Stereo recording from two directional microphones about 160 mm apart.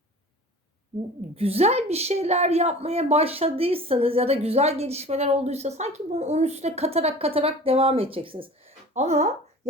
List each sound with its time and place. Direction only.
1.4 s a woman's voice: 40° right (ahead or behind)
8.9 s speech: 45° right (ahead or behind)